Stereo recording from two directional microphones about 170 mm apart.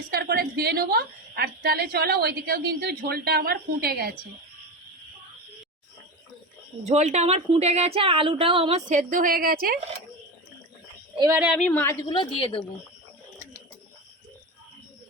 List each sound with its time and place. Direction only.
0.1 s a woman's voice: 65° right (ahead or behind)
6.8 s a woman's voice: 40° right (ahead or behind)
8.9 s a woman's voice: 50° right (ahead or behind)
11.3 s a woman's voice: 10° right (ahead or behind)
11.6 s a woman's voice: 10° left (ahead or behind); by 12.6 s 30° left (ahead or behind)